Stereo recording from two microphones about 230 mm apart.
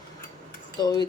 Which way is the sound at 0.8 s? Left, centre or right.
Centre.